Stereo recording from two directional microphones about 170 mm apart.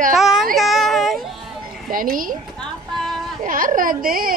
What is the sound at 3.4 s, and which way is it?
Speech, 55° right (ahead or behind).